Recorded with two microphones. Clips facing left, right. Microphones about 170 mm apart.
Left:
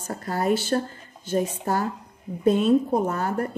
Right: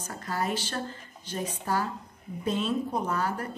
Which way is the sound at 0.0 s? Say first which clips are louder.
Left 6 dB; 40° left (ahead or behind).